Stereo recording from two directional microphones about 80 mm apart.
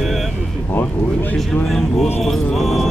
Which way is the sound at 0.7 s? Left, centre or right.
Left.